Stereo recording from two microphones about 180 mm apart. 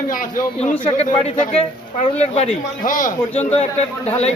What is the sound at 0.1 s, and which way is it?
Speech, 50° left (ahead or behind).